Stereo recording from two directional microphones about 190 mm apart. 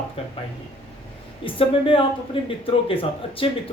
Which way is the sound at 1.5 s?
30° left (ahead or behind).